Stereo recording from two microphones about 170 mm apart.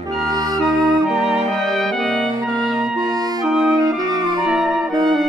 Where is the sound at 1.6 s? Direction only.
Centre (ahead or behind).